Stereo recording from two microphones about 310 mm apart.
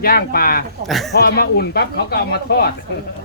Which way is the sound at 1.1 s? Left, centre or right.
Left.